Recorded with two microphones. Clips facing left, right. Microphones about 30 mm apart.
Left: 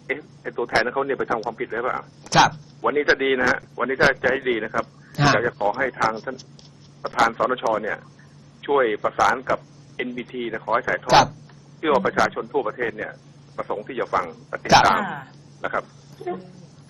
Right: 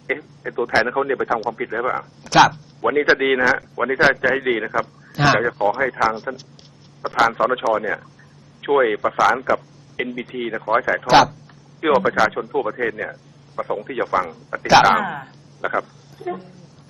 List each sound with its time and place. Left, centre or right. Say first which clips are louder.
0.1 s speech: right 3 dB; centre